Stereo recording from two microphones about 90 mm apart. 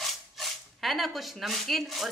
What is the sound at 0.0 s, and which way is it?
Speech, centre (ahead or behind).